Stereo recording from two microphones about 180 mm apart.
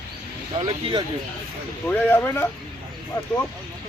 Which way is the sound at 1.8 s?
10° left (ahead or behind).